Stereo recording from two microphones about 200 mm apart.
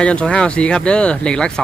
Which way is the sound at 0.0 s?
5° left (ahead or behind).